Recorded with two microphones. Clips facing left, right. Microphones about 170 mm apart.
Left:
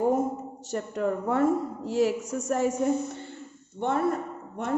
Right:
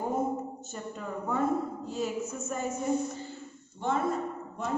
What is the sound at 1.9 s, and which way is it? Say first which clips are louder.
Speech: left 10 dB; 90° left.